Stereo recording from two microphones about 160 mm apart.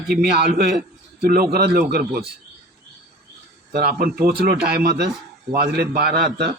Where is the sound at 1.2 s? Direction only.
70° right (ahead or behind).